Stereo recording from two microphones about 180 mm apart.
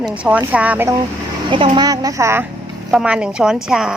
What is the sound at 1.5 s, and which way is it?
Speech, 25° right (ahead or behind).